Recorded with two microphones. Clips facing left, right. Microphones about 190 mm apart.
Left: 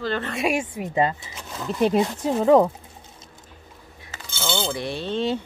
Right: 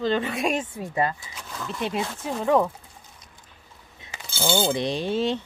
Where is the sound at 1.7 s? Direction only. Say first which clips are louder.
Left 8 dB; 40° left (ahead or behind).